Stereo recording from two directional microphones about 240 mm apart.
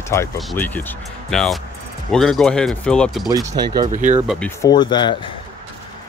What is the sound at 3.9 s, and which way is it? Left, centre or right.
Speech, right.